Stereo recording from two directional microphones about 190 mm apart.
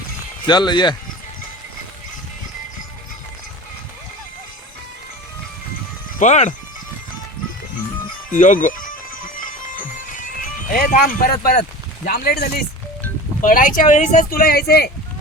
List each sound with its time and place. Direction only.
0.4 s speech: 25° left (ahead or behind)
6.1 s speech: 40° left (ahead or behind)
8.3 s speech: 45° left (ahead or behind)
9.3 s music: 45° left (ahead or behind)
10.7 s speech: 50° left (ahead or behind)
13.4 s speech: 45° left (ahead or behind)